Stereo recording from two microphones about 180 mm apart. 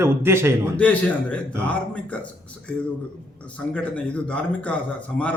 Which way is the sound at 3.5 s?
10° left (ahead or behind).